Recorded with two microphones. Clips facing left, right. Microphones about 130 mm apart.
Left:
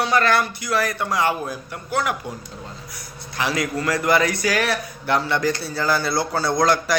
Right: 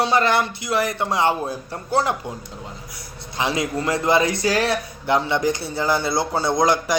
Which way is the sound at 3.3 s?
20° right (ahead or behind).